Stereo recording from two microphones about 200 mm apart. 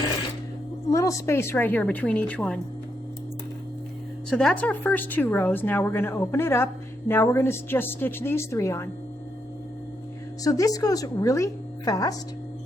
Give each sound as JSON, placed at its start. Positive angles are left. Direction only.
{"t": 0.9, "sound": "a woman's voice", "side_deg": 15}
{"t": 4.3, "sound": "a woman's voice", "side_deg": 5}
{"t": 10.4, "sound": "a woman's voice", "side_deg": 15}